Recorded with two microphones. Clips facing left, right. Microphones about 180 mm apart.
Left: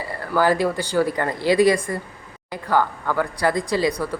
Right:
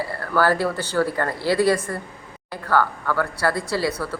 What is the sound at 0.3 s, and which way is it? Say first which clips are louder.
Speech: left 1 dB; 15° left (ahead or behind).